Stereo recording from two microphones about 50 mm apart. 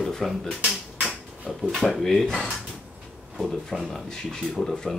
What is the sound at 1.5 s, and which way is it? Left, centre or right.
Speech, centre.